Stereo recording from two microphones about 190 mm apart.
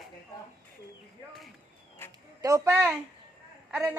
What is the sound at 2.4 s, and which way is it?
A woman's voice, 15° right (ahead or behind).